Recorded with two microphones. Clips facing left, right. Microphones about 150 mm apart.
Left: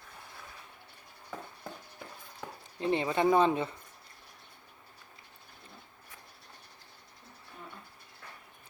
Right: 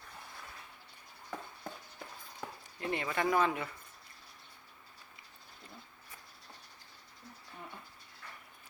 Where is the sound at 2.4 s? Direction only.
5° right (ahead or behind).